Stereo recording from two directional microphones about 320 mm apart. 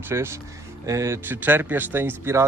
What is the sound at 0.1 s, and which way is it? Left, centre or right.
Speech, centre.